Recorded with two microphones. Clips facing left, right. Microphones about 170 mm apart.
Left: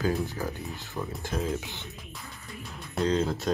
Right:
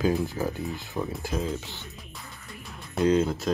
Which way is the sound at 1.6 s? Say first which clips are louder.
Left 1 dB; 15° left (ahead or behind).